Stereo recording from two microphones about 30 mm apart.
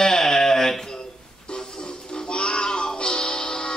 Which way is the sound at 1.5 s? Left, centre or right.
Left.